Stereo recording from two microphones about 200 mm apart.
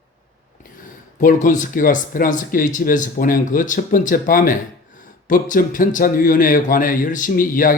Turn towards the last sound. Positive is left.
turn(degrees=45)  # may be behind; listen again after turning